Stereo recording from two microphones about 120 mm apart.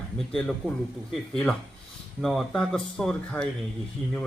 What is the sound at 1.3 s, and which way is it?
Speech, 5° left (ahead or behind).